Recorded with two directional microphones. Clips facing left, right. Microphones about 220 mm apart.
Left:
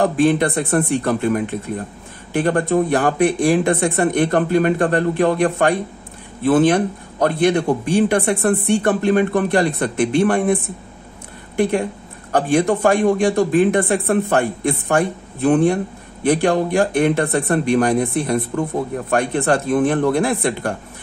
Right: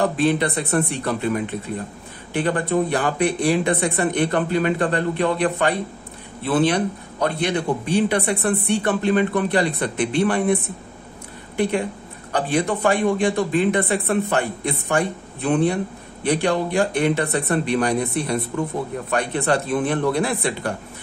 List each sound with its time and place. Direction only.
0.0 s a man's voice: 50° left (ahead or behind)
12.3 s a man's voice: 50° left (ahead or behind)